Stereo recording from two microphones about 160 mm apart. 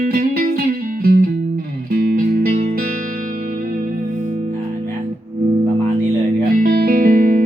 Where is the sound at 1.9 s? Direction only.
65° right (ahead or behind).